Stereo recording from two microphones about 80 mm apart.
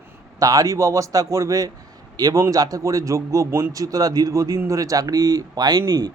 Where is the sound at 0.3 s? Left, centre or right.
Right.